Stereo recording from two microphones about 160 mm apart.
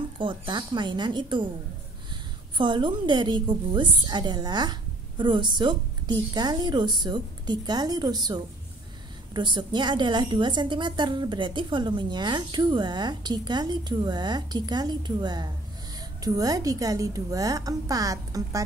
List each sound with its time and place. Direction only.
0.2 s a woman's voice: 30° right (ahead or behind)
2.5 s a woman's voice: 30° right (ahead or behind)